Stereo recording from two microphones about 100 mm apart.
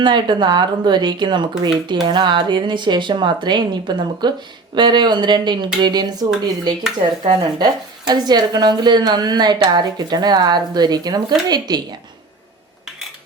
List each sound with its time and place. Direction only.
0.0 s speech: 50° right (ahead or behind)
7.3 s speech: 45° right (ahead or behind)